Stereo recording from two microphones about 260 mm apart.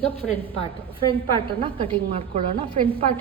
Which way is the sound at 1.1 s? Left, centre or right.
Centre.